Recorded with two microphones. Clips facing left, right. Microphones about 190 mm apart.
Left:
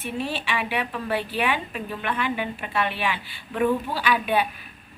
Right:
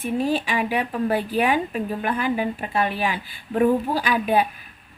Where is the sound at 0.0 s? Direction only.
40° right (ahead or behind).